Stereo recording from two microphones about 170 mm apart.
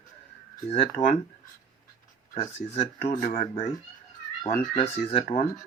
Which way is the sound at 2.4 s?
40° left (ahead or behind).